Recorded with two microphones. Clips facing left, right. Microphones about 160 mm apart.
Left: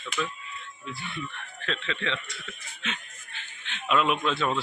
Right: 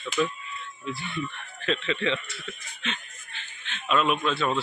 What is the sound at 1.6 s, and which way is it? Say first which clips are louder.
Speech: right 5 dB; 5° right (ahead or behind).